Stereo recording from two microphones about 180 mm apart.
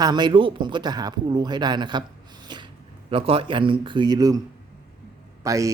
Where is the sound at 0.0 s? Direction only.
25° right (ahead or behind).